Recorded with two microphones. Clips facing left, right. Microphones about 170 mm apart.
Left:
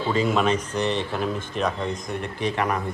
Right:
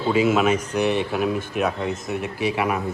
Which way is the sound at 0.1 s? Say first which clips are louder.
Right 3 dB; 5° right (ahead or behind).